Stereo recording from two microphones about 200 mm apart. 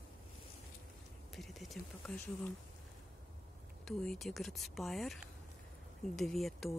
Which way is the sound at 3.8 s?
Centre (ahead or behind).